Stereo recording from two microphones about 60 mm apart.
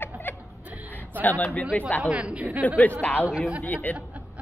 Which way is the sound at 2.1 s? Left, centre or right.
Centre.